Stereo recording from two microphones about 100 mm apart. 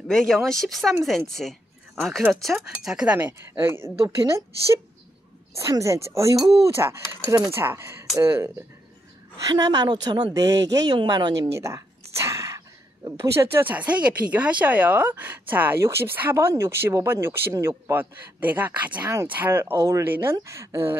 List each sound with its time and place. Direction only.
0.1 s speech: 5° left (ahead or behind)
3.2 s speech: 20° right (ahead or behind)
5.6 s speech: 30° right (ahead or behind)
9.5 s speech: 40° right (ahead or behind)
11.6 s a sound: 30° right (ahead or behind)
13.2 s speech: 25° right (ahead or behind)
20.1 s speech: 20° right (ahead or behind)